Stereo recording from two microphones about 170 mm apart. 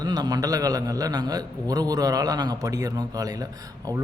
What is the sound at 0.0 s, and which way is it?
A man's voice, 20° right (ahead or behind).